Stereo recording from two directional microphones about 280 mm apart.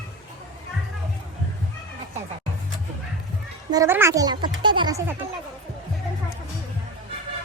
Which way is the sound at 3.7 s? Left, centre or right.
Centre.